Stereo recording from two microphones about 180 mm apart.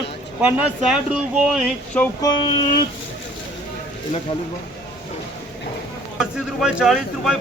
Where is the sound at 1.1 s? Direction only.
5° right (ahead or behind).